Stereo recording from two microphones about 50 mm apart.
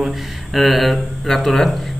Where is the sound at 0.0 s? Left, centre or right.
Centre.